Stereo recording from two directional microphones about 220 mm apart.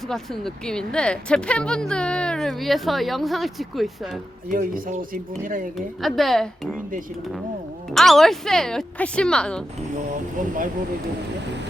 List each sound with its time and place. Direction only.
0.1 s a woman's voice: centre (ahead or behind)
4.4 s speech: 40° right (ahead or behind)
5.7 s a woman's voice: centre (ahead or behind)
7.9 s a woman's voice: centre (ahead or behind)
10.4 s speech: 35° right (ahead or behind)